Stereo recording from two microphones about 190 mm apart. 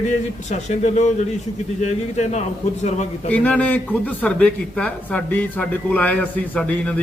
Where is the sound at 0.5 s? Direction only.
40° left (ahead or behind).